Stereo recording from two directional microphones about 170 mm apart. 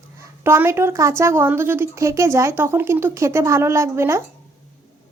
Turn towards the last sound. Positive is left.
turn(degrees=-15)  # may be behind; listen again after turning